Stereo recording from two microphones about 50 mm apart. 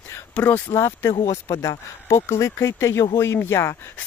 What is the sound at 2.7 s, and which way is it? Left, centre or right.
Speech, left.